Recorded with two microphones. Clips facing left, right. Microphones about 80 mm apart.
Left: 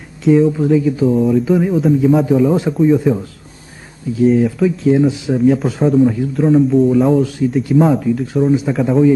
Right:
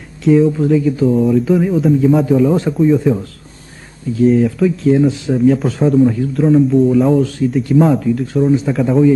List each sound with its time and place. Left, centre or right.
0.2 s speech: centre